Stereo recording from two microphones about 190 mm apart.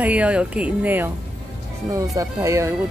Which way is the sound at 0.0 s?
5° right (ahead or behind).